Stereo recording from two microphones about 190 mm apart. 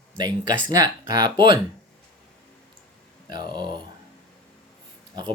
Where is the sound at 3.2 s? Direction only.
25° right (ahead or behind).